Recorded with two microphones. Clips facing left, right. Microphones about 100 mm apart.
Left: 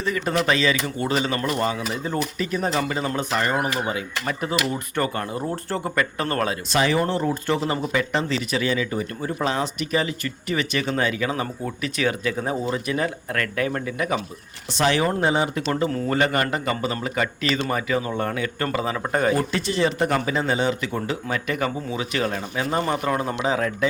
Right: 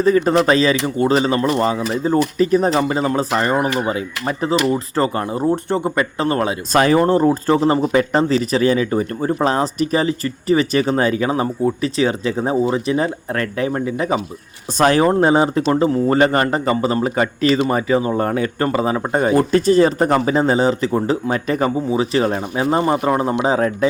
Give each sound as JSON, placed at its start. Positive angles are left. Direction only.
{"t": 0.0, "sound": "speech", "side_deg": -35}
{"t": 6.7, "sound": "speech", "side_deg": -45}
{"t": 14.8, "sound": "speech", "side_deg": -45}
{"t": 19.4, "sound": "speech", "side_deg": -40}